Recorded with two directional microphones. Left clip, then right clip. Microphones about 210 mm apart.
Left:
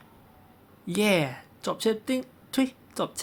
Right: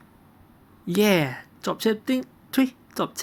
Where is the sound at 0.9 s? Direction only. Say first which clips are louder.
Right 3 dB; 15° right (ahead or behind).